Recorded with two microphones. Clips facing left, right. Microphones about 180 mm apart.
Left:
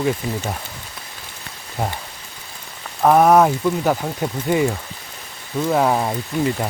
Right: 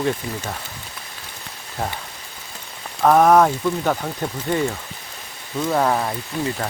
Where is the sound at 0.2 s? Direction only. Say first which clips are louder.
Left 4 dB; 25° left (ahead or behind).